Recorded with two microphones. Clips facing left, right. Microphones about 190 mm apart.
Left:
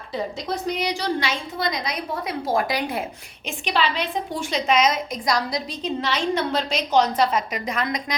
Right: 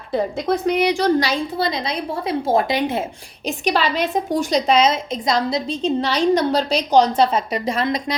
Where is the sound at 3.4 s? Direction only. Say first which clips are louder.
Right 4 dB; 40° right (ahead or behind).